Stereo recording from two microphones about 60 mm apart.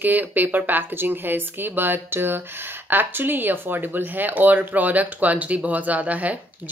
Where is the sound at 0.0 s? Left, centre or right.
Right.